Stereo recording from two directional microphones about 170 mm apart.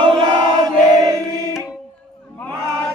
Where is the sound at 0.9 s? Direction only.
20° right (ahead or behind).